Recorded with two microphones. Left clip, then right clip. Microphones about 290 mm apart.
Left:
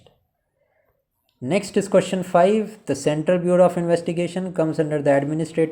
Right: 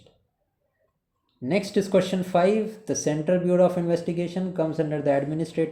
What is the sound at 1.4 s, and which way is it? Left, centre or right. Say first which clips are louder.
Speech: left 3 dB; left.